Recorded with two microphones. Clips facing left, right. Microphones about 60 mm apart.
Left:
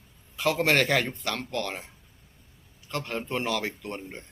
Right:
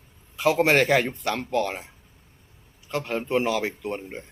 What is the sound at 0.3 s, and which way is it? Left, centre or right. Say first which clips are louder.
Speech: right 4 dB; centre.